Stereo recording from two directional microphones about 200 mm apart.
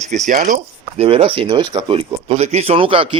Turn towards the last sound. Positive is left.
turn(degrees=-25)  # may be behind; listen again after turning